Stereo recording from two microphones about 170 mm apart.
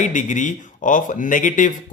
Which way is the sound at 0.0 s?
50° left (ahead or behind).